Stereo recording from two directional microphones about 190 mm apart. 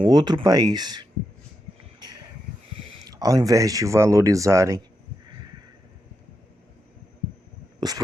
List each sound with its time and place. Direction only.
0.0 s speech: 20° right (ahead or behind)
3.1 s speech: 20° right (ahead or behind)
7.8 s a sound: 20° right (ahead or behind)